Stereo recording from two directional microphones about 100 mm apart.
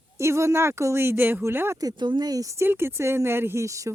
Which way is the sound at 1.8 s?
45° right (ahead or behind).